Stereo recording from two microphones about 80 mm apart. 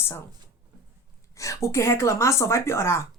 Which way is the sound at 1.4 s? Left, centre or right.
Left.